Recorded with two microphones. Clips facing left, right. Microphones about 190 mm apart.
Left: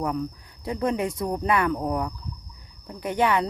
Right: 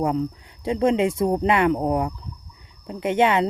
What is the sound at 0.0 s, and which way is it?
A woman's voice, 25° right (ahead or behind).